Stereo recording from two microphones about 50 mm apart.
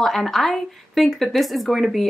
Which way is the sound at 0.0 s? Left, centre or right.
Centre.